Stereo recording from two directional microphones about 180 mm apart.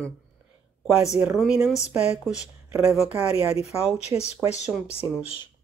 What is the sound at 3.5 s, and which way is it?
Speech, 35° left (ahead or behind).